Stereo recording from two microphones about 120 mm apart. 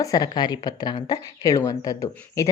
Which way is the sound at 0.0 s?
35° left (ahead or behind).